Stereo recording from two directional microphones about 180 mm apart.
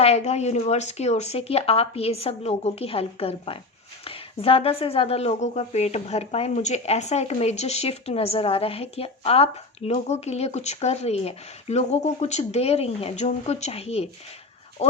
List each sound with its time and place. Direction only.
0.0 s a woman's voice: 35° left (ahead or behind)